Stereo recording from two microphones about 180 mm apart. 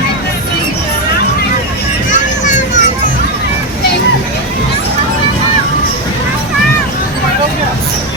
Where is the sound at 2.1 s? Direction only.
45° left (ahead or behind).